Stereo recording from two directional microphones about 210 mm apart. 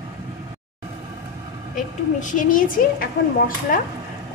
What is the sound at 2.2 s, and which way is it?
Speech, 40° left (ahead or behind).